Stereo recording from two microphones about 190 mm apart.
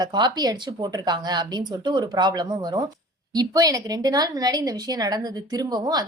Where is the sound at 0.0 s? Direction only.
20° right (ahead or behind).